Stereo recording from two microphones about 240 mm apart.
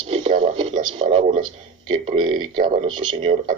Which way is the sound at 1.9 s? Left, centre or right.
Right.